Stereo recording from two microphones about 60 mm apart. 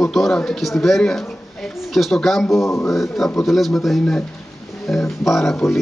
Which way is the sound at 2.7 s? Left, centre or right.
Left.